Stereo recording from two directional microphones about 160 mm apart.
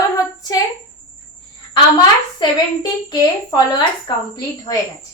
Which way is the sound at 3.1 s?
25° left (ahead or behind).